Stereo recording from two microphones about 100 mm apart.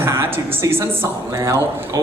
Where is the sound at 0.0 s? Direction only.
25° right (ahead or behind).